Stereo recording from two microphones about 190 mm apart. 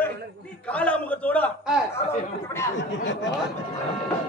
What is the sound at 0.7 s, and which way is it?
A man's voice, 5° left (ahead or behind).